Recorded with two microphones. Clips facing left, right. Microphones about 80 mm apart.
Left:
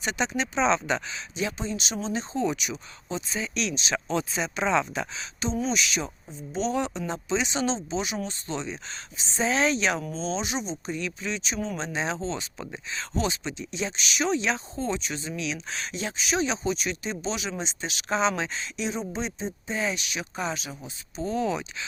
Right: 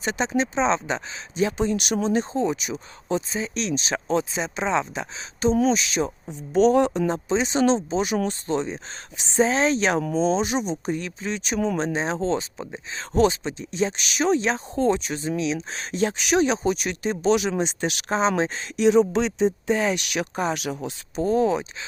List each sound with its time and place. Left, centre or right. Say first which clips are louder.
0.0 s speech: right 4 dB; right
1.4 s speech: right 8 dB; right
2.3 s speech: right 3 dB; right
4.2 s speech: right 2 dB; right
6.5 s speech: right 10 dB; right
9.1 s speech: right 2 dB; right
9.4 s speech: right 4 dB; right
18.2 s speech: right 5 dB; right
18.9 s speech: right 15 dB; right
21.2 s speech: right 7 dB; right